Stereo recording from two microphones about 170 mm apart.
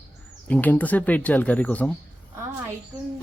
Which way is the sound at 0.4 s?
10° left (ahead or behind).